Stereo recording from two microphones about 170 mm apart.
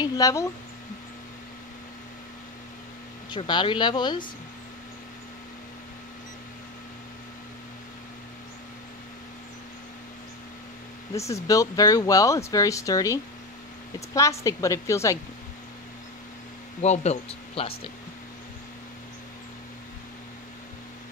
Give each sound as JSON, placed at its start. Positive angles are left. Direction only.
{"t": 0.0, "sound": "speech", "side_deg": 20}
{"t": 3.3, "sound": "speech", "side_deg": 30}
{"t": 11.1, "sound": "a woman's voice", "side_deg": 15}
{"t": 16.8, "sound": "speech", "side_deg": 40}